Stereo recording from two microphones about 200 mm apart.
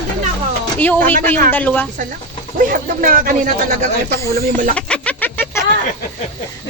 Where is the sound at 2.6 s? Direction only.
45° right (ahead or behind).